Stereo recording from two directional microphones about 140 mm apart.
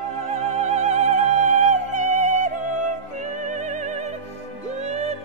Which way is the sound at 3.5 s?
60° right (ahead or behind).